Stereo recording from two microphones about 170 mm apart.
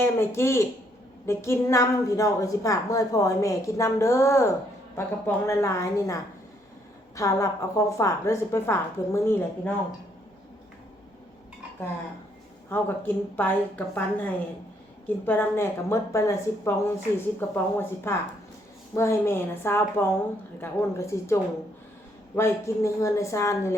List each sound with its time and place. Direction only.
0.0 s a woman's voice: 15° left (ahead or behind)
7.2 s a woman's voice: 20° left (ahead or behind)
12.6 s a woman's voice: 10° left (ahead or behind)
22.4 s a woman's voice: 15° left (ahead or behind)